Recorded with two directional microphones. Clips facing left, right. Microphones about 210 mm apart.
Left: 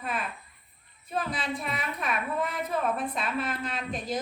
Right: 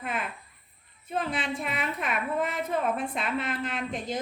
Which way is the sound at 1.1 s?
25° right (ahead or behind).